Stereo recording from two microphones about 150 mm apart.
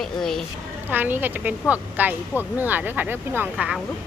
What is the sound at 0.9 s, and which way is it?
A woman's voice, 15° right (ahead or behind).